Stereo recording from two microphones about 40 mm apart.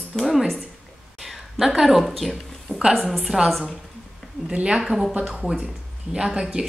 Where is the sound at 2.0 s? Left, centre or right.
Centre.